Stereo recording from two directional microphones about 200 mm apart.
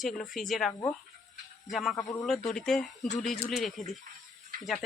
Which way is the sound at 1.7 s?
Centre (ahead or behind).